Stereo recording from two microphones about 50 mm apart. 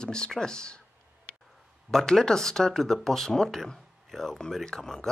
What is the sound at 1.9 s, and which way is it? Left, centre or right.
Speech, centre.